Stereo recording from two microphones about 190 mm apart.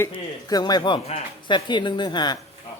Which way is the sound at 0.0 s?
20° left (ahead or behind).